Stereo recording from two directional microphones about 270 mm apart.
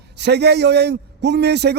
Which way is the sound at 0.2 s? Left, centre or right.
Right.